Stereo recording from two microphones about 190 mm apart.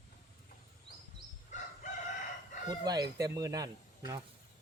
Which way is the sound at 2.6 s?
20° right (ahead or behind).